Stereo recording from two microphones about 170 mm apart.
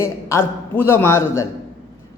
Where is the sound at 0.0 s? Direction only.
15° left (ahead or behind).